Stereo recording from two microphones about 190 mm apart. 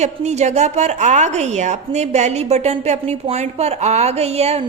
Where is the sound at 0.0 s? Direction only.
35° right (ahead or behind).